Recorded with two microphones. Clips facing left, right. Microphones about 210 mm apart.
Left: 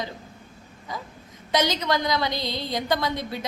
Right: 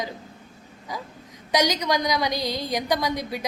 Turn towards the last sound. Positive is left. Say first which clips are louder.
# right 1 dB
turn(degrees=-15)  # may be behind; listen again after turning